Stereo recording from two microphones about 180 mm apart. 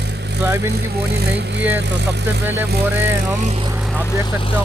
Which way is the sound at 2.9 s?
10° right (ahead or behind).